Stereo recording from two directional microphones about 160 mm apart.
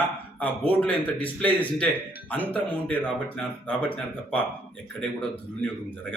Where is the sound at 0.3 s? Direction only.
10° left (ahead or behind).